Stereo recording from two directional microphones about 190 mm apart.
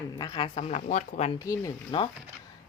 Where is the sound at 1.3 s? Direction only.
15° left (ahead or behind).